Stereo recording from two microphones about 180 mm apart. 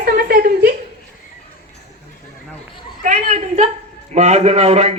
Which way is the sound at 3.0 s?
40° right (ahead or behind).